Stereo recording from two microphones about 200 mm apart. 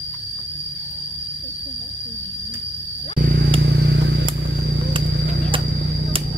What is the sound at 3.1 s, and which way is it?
Vehicle, 45° right (ahead or behind).